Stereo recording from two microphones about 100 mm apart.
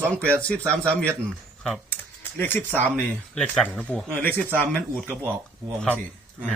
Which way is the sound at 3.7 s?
15° left (ahead or behind).